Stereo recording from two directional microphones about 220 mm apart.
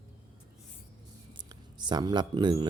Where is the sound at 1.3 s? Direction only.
20° right (ahead or behind).